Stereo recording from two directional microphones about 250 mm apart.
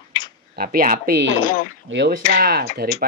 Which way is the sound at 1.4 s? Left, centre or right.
Left.